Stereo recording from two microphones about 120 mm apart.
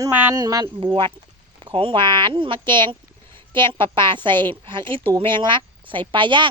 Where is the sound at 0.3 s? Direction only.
30° right (ahead or behind).